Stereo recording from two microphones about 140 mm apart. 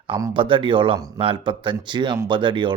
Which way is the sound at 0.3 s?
35° right (ahead or behind).